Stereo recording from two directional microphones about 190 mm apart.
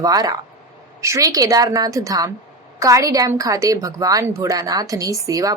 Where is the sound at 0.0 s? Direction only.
20° right (ahead or behind).